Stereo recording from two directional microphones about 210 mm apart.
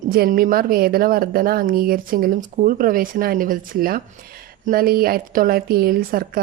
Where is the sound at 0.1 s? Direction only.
45° right (ahead or behind).